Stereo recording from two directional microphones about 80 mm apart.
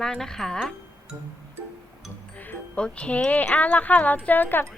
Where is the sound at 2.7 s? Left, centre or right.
Centre.